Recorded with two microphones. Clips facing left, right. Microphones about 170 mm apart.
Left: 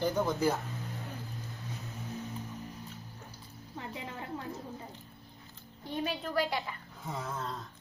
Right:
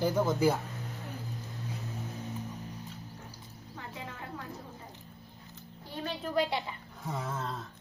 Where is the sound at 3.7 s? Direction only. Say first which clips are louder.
Left 2 dB; 20° left (ahead or behind).